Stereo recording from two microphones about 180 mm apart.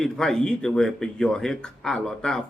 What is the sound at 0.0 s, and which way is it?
Speech, centre (ahead or behind).